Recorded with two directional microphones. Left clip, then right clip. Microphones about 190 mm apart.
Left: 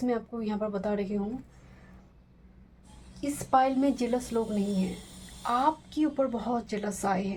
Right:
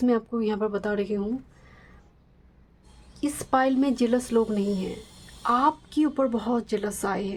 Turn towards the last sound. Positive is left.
turn(degrees=-30)  # may be behind; listen again after turning